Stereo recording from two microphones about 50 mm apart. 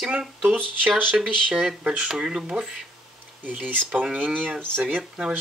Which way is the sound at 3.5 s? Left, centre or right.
Right.